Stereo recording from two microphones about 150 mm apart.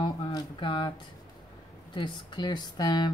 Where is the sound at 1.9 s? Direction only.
30° left (ahead or behind).